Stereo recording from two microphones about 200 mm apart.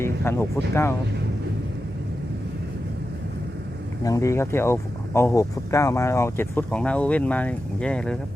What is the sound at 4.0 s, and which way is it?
Speech, 15° left (ahead or behind).